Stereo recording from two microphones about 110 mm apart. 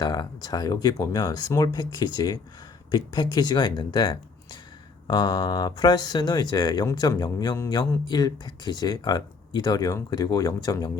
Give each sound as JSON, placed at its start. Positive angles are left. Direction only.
{"t": 0.0, "sound": "speech", "side_deg": 35}